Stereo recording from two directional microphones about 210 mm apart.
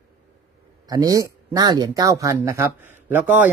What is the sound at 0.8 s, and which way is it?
Speech, 15° right (ahead or behind).